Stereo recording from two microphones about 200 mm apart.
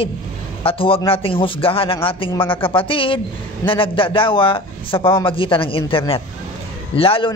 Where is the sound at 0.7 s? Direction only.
25° left (ahead or behind).